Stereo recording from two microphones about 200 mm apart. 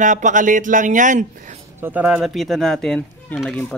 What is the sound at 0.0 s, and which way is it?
Speech, 40° right (ahead or behind).